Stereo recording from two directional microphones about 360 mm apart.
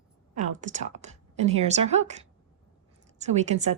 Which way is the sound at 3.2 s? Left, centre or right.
Centre.